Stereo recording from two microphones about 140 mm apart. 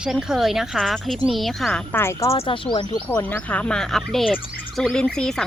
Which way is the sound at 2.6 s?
35° left (ahead or behind).